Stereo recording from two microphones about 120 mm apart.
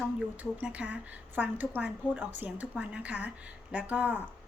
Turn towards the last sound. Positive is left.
turn(degrees=-15)  # may be behind; listen again after turning